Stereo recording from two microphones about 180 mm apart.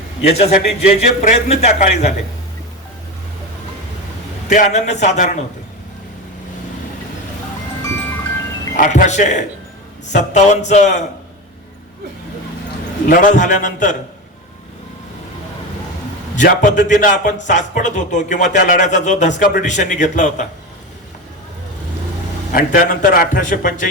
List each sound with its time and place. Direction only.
0.2 s a man's voice: 35° left (ahead or behind)
4.4 s a man's voice: 45° left (ahead or behind)
8.7 s a man's voice: 50° left (ahead or behind)
13.1 s a man's voice: 45° left (ahead or behind)
16.3 s a man's voice: 45° left (ahead or behind)
22.5 s a man's voice: 50° left (ahead or behind)